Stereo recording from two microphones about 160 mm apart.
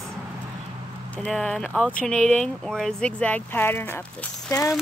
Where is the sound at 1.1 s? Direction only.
5° left (ahead or behind).